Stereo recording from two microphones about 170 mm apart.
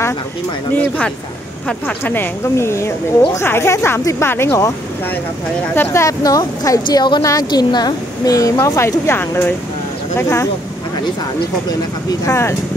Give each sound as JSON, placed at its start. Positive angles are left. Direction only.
{"t": 0.7, "sound": "speech", "side_deg": 10}
{"t": 5.8, "sound": "a woman's voice", "side_deg": 20}
{"t": 12.1, "sound": "speech", "side_deg": 15}